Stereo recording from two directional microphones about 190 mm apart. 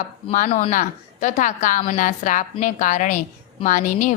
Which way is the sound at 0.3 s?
40° left (ahead or behind).